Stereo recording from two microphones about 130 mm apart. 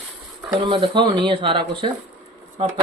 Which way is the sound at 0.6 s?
40° right (ahead or behind).